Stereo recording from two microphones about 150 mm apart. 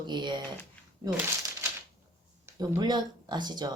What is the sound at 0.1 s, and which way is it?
Speech, 30° right (ahead or behind).